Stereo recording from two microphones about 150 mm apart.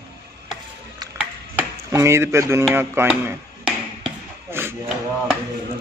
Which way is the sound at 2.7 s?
15° right (ahead or behind).